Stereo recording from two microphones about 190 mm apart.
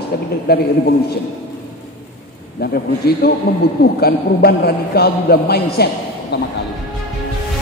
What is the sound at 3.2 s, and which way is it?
A man's voice, 55° left (ahead or behind).